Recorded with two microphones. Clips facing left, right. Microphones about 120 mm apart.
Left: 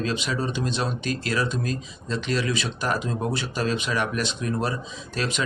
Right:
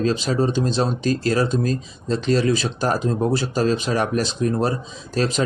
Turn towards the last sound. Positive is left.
turn(degrees=-35)  # may be behind; listen again after turning